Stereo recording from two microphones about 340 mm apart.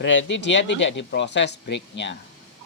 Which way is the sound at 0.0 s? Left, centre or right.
Left.